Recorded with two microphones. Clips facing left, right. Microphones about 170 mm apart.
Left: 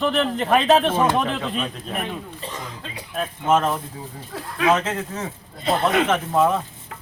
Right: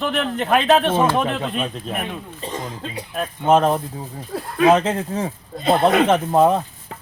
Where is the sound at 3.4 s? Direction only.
35° right (ahead or behind).